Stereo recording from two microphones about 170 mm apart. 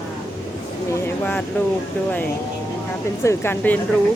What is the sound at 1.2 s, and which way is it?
Speech, 10° left (ahead or behind).